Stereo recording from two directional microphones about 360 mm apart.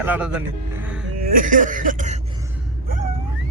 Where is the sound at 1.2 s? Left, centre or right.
Right.